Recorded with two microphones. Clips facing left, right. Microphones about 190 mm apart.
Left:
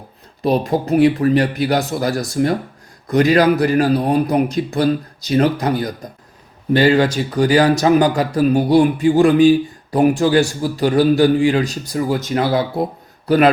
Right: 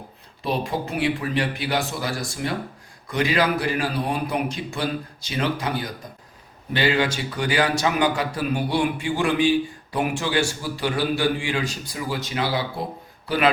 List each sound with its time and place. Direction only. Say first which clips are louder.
0.4 s a man's voice: left 9 dB; 40° left (ahead or behind)